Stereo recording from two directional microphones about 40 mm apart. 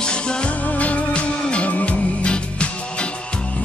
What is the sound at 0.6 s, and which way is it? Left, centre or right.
Music, left.